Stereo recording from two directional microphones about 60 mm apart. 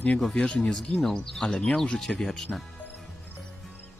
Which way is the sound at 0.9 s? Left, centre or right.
Centre.